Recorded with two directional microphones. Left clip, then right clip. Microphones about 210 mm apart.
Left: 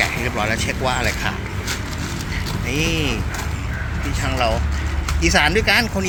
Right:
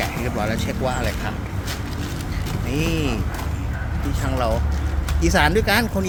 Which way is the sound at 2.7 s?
15° right (ahead or behind).